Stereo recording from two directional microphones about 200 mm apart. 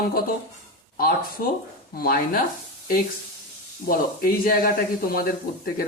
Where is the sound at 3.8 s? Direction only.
45° left (ahead or behind).